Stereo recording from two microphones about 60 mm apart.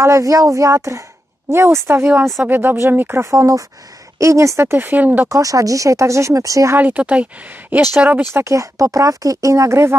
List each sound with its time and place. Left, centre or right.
0.0 s speech: right
2.4 s speech: right
3.2 s speech: right
5.3 s speech: right
6.8 s speech: right
8.2 s speech: right
8.5 s speech: right